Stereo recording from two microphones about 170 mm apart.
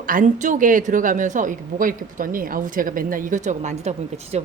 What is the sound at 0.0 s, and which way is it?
A woman's voice, 50° right (ahead or behind).